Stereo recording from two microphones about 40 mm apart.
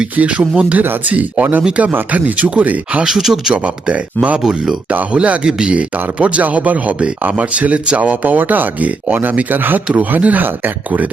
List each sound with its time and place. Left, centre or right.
0.2 s speech: right
1.1 s speech: right
3.1 s speech: centre
3.5 s speech: right
5.5 s speech: centre
5.7 s speech: right